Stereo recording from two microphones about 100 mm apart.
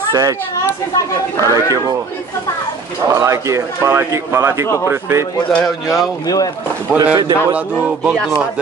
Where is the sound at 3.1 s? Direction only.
30° right (ahead or behind).